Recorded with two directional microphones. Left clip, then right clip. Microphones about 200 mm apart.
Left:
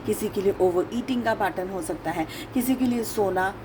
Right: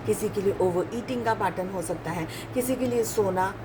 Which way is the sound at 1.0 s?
40° left (ahead or behind).